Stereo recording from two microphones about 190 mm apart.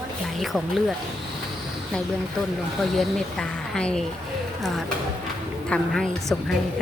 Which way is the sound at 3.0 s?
5° left (ahead or behind).